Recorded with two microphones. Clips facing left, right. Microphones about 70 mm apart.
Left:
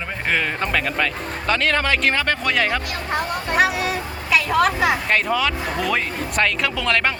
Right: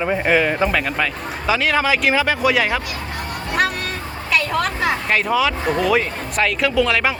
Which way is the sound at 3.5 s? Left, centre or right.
Centre.